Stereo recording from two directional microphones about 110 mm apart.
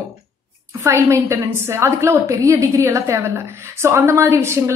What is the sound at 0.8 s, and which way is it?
A woman's voice, 25° right (ahead or behind).